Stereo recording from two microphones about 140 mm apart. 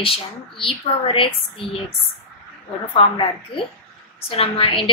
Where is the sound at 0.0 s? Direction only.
40° left (ahead or behind).